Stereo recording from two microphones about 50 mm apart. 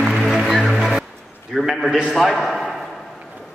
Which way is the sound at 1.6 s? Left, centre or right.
Centre.